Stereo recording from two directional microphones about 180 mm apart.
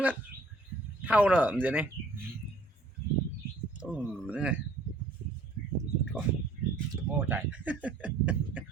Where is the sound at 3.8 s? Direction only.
5° right (ahead or behind).